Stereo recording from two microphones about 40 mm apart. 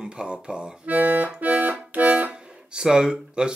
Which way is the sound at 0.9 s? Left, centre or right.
Right.